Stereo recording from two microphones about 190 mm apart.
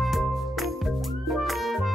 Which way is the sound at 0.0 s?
Centre (ahead or behind).